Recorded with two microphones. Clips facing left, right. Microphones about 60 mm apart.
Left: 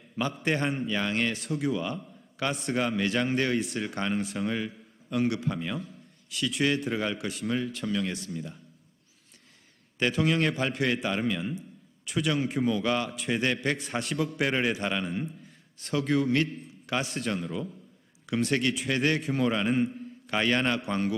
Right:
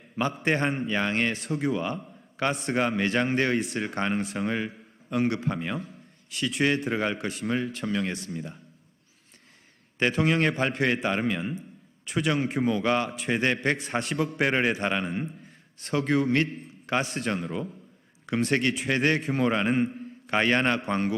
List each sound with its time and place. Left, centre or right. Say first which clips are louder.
0.2 s a man's voice: right 3 dB; right
3.5 s a man's voice: right 2 dB; right
3.8 s a man's voice: right 2 dB; right
4.2 s speech: right 1 dB; right
4.4 s a man's voice: right 2 dB; right
8.2 s a man's voice: right 1 dB; right
10.0 s a man's voice: right 2 dB; right
12.6 s a man's voice: right 4 dB; right